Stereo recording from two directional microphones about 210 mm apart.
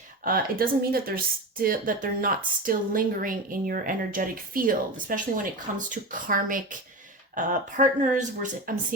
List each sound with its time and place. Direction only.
0.3 s a woman's voice: 45° right (ahead or behind)